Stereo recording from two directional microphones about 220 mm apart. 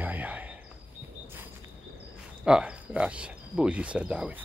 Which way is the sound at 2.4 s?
5° right (ahead or behind).